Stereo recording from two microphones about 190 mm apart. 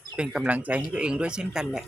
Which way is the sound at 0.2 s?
5° right (ahead or behind).